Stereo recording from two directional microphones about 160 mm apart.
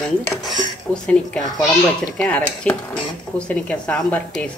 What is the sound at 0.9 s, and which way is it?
Speech, 5° left (ahead or behind).